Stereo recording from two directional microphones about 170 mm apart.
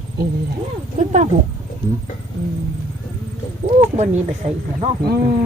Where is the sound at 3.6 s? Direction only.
45° right (ahead or behind).